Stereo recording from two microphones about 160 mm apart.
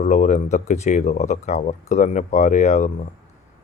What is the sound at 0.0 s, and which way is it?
Speech, 45° left (ahead or behind).